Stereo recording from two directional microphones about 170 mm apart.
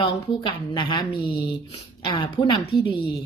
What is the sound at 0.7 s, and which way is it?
A woman's voice, 25° left (ahead or behind).